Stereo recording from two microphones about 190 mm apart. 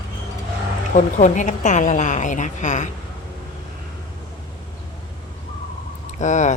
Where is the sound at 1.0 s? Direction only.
40° left (ahead or behind).